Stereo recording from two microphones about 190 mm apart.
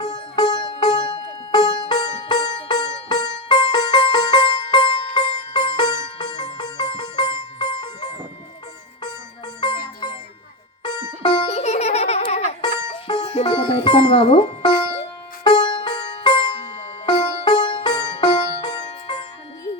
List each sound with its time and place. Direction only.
0.0 s sitar: 20° left (ahead or behind)
5.5 s music: 20° left (ahead or behind)
9.6 s music: 20° left (ahead or behind)
12.6 s music: 25° left (ahead or behind)
13.2 s music: 35° left (ahead or behind)
15.4 s music: 25° left (ahead or behind)